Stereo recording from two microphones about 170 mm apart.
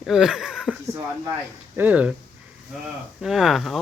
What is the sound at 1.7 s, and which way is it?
Speech, 10° right (ahead or behind).